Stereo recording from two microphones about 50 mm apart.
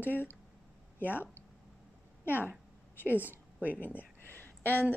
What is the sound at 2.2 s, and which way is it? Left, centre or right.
Speech, left.